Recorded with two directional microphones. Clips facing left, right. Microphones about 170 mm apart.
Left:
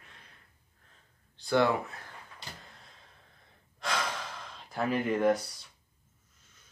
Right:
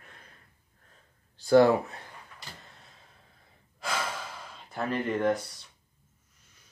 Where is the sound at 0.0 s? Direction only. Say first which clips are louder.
Right 3 dB; 50° right (ahead or behind).